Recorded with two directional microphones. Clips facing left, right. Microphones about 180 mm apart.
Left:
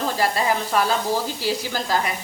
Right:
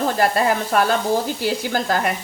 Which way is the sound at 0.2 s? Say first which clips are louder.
Right 3 dB; 55° right (ahead or behind).